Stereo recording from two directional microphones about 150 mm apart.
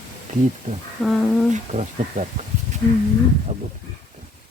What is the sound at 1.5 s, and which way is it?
Speech, 50° right (ahead or behind).